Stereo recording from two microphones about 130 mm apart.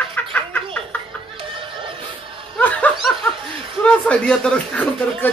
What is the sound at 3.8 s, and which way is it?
Speech, 5° left (ahead or behind).